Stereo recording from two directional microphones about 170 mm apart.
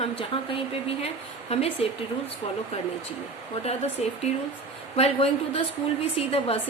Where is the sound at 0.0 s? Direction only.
35° left (ahead or behind).